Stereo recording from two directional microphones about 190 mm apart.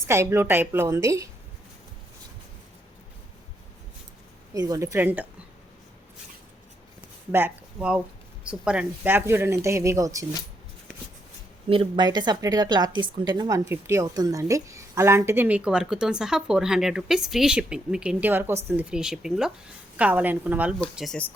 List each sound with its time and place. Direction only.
0.0 s speech: 15° right (ahead or behind)
4.5 s speech: 20° right (ahead or behind)
7.3 s speech: 10° right (ahead or behind)
11.7 s a woman's voice: 25° right (ahead or behind); by 21.2 s centre (ahead or behind)